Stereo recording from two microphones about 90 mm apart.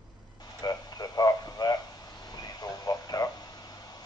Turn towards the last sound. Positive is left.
turn(degrees=45)  # may be behind; listen again after turning